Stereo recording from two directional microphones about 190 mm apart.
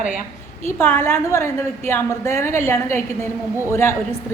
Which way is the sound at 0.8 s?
10° left (ahead or behind).